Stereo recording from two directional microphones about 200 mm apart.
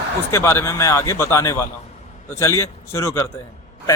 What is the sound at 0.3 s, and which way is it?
A man's voice, 15° left (ahead or behind).